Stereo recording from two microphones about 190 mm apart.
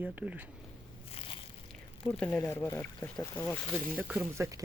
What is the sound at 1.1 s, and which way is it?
Biting, 30° left (ahead or behind).